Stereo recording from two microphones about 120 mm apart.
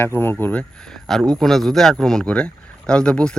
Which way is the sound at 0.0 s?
20° left (ahead or behind).